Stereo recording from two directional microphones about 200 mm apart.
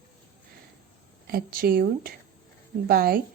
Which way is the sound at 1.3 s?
45° right (ahead or behind).